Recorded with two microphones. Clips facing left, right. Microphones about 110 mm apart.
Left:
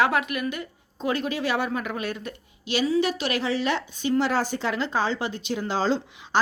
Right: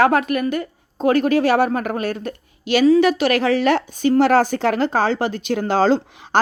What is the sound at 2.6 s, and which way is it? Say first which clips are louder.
A woman's voice: right 9 dB; 60° right (ahead or behind).